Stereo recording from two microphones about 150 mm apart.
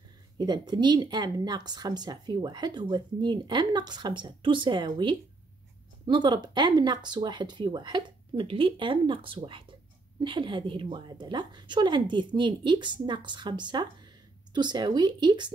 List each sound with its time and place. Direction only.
0.4 s a woman's voice: 30° right (ahead or behind)